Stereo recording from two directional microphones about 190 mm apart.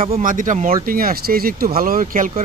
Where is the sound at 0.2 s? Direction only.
45° right (ahead or behind).